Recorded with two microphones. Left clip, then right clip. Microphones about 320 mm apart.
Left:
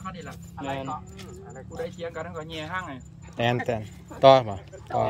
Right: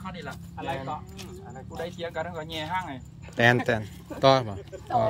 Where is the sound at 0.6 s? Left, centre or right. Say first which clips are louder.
Even; right.